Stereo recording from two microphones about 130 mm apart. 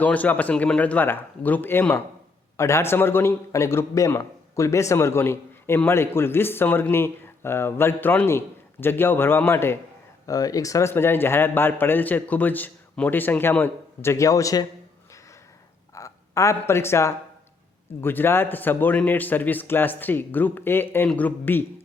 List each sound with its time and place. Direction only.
0.0 s a man's voice: 10° left (ahead or behind); by 14.7 s 25° left (ahead or behind)
16.0 s speech: 25° left (ahead or behind)